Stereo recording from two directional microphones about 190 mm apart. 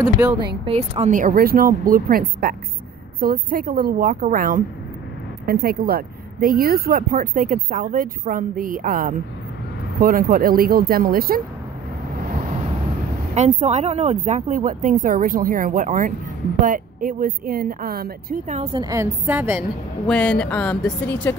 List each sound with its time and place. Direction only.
0.7 s speech: 35° right (ahead or behind); by 11.4 s 50° right (ahead or behind)
13.3 s speech: 35° right (ahead or behind)
18.6 s a woman's voice: 25° right (ahead or behind)
20.1 s speech: 5° left (ahead or behind)